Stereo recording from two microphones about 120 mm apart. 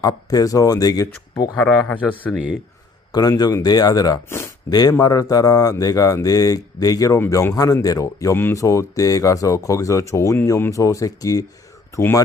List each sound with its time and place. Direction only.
0.0 s speech: 30° left (ahead or behind)
1.5 s speech: 10° left (ahead or behind)
3.1 s speech: 35° left (ahead or behind)
4.3 s a sound: 20° left (ahead or behind)
4.7 s speech: 35° left (ahead or behind)